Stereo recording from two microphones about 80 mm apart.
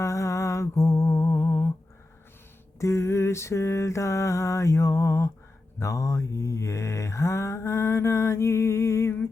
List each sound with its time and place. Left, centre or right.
0.0 s mantra: left
2.7 s mantra: left